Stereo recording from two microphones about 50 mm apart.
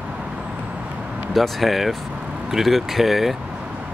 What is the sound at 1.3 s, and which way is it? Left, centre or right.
Speech, centre.